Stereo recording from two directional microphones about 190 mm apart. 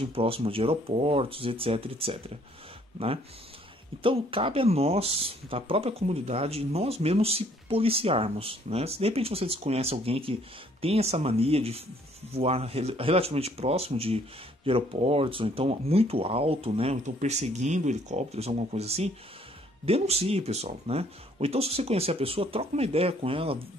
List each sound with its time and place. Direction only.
0.1 s speech: 30° right (ahead or behind)
4.0 s speech: 30° right (ahead or behind)